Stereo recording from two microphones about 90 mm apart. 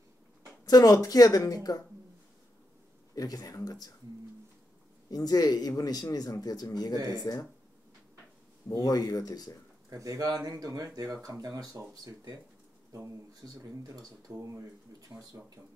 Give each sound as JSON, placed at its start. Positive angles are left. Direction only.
{"t": 0.7, "sound": "speech", "side_deg": 40}
{"t": 3.2, "sound": "speech", "side_deg": 45}
{"t": 5.1, "sound": "speech", "side_deg": 45}
{"t": 8.7, "sound": "speech", "side_deg": 45}
{"t": 9.8, "sound": "speech", "side_deg": -40}
{"t": 13.4, "sound": "speech", "side_deg": -40}